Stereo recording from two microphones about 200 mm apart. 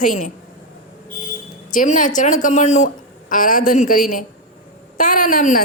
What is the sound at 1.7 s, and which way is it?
A woman's voice, 40° left (ahead or behind).